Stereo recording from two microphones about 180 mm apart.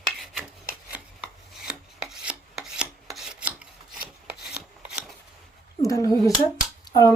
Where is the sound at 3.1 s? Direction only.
Centre (ahead or behind).